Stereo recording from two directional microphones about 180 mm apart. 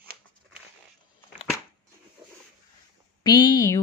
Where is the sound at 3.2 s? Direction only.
25° left (ahead or behind).